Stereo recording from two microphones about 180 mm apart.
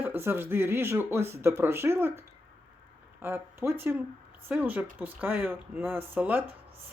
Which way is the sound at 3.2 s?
10° right (ahead or behind).